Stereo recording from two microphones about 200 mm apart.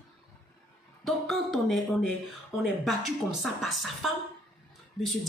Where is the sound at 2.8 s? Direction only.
Centre (ahead or behind).